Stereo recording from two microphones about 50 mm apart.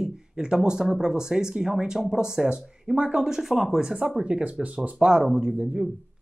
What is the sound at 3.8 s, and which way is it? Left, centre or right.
Speech, centre.